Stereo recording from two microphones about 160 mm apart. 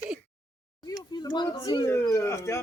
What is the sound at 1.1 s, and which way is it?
Speech, 25° left (ahead or behind).